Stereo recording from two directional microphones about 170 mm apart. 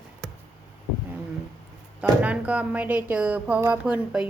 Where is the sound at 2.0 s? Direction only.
5° right (ahead or behind).